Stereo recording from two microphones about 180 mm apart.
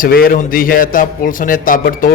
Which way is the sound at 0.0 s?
55° left (ahead or behind).